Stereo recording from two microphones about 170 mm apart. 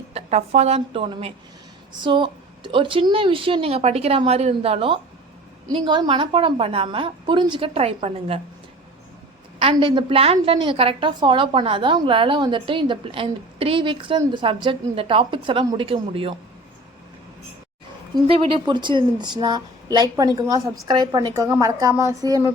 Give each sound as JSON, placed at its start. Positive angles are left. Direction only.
{"t": 0.1, "sound": "a woman's voice", "side_deg": -40}
{"t": 9.6, "sound": "a woman's voice", "side_deg": -30}
{"t": 18.1, "sound": "speech", "side_deg": -30}